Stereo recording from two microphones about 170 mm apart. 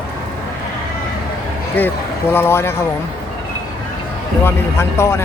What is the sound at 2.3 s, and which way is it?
Speech, 15° left (ahead or behind).